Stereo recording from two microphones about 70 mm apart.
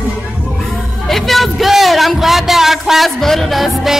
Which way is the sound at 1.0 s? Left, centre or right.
Centre.